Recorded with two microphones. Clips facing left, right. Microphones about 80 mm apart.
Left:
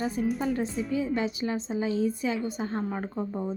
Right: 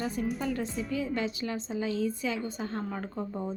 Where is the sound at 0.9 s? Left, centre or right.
Left.